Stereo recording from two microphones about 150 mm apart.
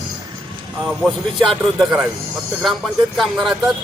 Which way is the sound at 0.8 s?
Centre (ahead or behind).